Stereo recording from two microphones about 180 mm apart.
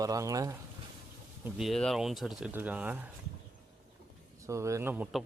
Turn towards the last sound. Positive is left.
turn(degrees=-5)  # may be behind; listen again after turning